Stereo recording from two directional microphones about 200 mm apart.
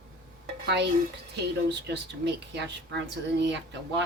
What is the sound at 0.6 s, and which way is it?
Speech, 60° right (ahead or behind).